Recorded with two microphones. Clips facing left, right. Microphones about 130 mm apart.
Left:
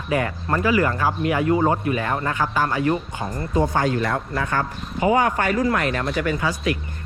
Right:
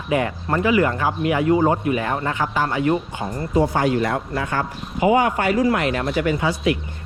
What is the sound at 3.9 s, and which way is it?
Speech, 30° right (ahead or behind).